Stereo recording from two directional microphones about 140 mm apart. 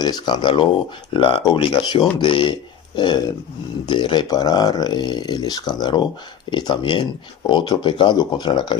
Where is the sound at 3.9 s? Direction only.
35° left (ahead or behind).